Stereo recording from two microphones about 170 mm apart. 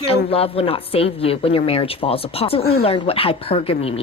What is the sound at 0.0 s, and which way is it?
A woman's voice, 35° left (ahead or behind).